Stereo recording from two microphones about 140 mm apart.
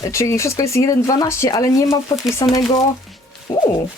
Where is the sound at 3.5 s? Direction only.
30° left (ahead or behind).